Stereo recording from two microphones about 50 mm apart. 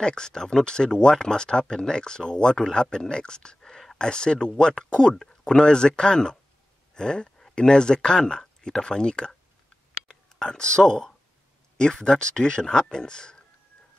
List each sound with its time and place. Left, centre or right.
0.0 s speech: centre
10.0 s a sound: centre
11.7 s speech: centre